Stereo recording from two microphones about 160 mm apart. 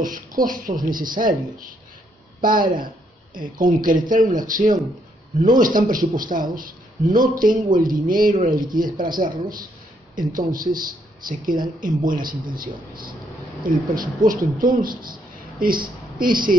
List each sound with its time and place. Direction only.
0.4 s speech: 60° right (ahead or behind)
3.3 s a woman's voice: 60° right (ahead or behind)